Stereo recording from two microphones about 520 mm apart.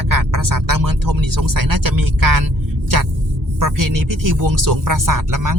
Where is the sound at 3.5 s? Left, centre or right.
Right.